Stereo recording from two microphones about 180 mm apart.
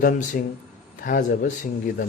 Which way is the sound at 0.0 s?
45° left (ahead or behind).